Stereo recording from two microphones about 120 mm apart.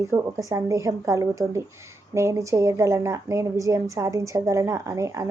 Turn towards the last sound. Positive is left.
turn(degrees=-25)  # may be behind; listen again after turning